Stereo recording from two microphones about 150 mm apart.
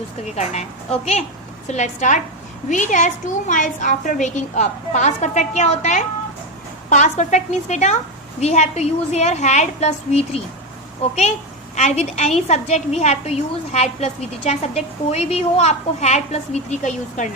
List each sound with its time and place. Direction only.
0.3 s a woman's voice: 45° left (ahead or behind)
11.8 s a woman's voice: 50° left (ahead or behind)